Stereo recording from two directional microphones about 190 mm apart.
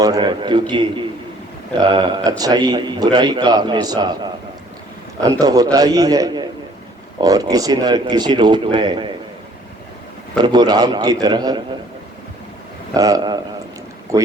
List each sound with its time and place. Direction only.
0.0 s a man's voice: 20° right (ahead or behind)
1.8 s a man's voice: 25° right (ahead or behind)
10.3 s a man's voice: 20° right (ahead or behind)
12.9 s a man's voice: 20° right (ahead or behind)